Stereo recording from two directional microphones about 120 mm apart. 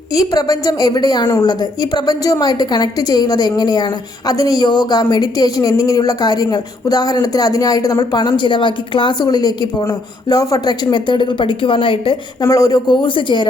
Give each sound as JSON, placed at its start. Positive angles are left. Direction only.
{"t": 0.1, "sound": "speech", "side_deg": 30}
{"t": 12.4, "sound": "speech", "side_deg": 25}
{"t": 13.0, "sound": "speech", "side_deg": 45}